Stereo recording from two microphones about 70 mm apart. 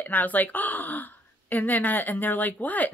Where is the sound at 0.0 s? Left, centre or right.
Left.